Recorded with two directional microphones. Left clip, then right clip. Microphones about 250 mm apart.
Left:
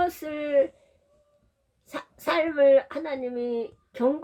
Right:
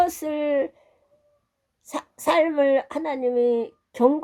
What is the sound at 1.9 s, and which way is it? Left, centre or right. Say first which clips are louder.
Speech: right 5 dB; right.